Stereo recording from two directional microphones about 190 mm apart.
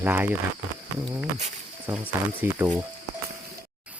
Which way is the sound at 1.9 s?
10° right (ahead or behind).